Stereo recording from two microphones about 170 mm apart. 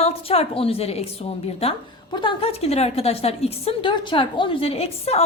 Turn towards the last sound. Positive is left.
turn(degrees=40)  # may be behind; listen again after turning